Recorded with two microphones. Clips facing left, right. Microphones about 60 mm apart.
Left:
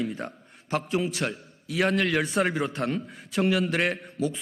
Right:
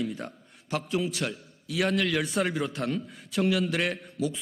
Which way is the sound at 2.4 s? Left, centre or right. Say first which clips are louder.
Left 2 dB; left.